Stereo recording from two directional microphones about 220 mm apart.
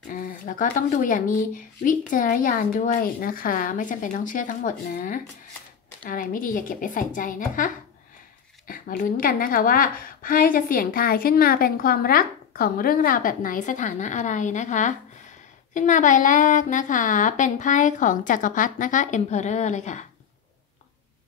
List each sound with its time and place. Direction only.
0.1 s a woman's voice: 35° left (ahead or behind)